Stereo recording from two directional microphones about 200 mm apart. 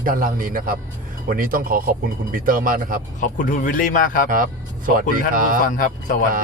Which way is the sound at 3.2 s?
45° left (ahead or behind).